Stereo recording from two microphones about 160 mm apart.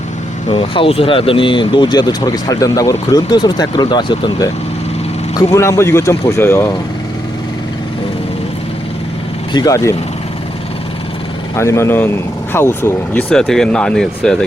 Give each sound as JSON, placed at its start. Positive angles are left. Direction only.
{"t": 0.5, "sound": "speech", "side_deg": 30}
{"t": 5.5, "sound": "speech", "side_deg": 20}
{"t": 9.5, "sound": "speech", "side_deg": 25}
{"t": 11.5, "sound": "speech", "side_deg": 15}
{"t": 13.3, "sound": "speech", "side_deg": 0}